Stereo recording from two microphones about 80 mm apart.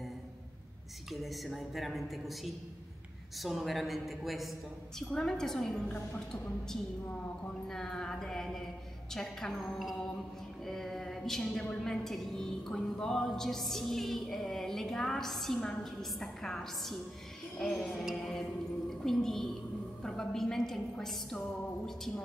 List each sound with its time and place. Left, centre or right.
1.1 s a woman's voice: centre
5.9 s a woman's voice: centre
6.7 s a woman's voice: centre